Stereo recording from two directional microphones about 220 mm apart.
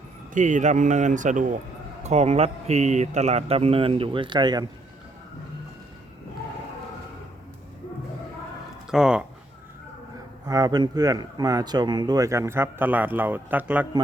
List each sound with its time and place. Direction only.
0.3 s speech: 35° right (ahead or behind)
8.9 s speech: 5° right (ahead or behind)
10.4 s speech: 15° right (ahead or behind)